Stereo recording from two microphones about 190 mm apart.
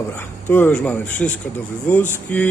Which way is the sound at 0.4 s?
10° left (ahead or behind).